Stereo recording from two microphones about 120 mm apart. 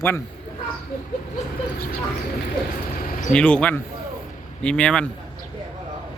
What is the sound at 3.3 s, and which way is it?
A man's voice, 10° left (ahead or behind).